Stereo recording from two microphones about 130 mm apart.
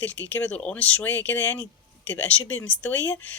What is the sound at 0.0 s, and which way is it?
Speech, 10° left (ahead or behind).